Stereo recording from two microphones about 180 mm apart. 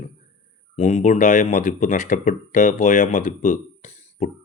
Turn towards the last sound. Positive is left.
turn(degrees=40)  # may be behind; listen again after turning